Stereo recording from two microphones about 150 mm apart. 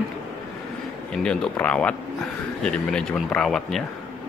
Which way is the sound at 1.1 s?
5° left (ahead or behind).